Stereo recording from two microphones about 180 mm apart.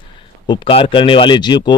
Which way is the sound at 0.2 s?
30° left (ahead or behind).